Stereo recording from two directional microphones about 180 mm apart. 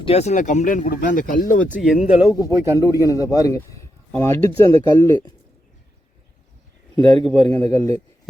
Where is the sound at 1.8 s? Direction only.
Centre (ahead or behind).